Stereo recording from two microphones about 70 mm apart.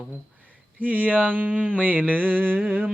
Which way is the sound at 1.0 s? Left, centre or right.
Right.